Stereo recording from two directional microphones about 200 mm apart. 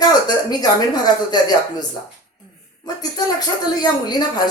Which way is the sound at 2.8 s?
20° left (ahead or behind).